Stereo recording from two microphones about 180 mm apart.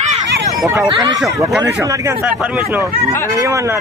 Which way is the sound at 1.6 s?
15° right (ahead or behind).